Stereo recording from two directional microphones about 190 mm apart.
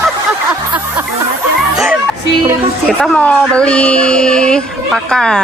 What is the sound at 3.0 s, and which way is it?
Speech, 5° left (ahead or behind).